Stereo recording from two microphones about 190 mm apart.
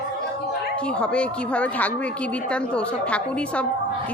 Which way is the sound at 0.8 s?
5° left (ahead or behind).